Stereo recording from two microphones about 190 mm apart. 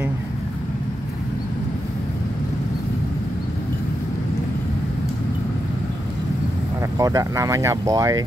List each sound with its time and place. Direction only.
7.0 s speech: 15° right (ahead or behind)